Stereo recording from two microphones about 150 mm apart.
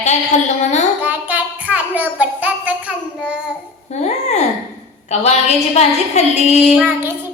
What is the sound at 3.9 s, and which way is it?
A woman's voice, 50° left (ahead or behind).